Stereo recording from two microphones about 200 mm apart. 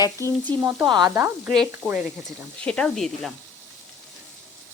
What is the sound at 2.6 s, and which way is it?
Speech, 5° left (ahead or behind).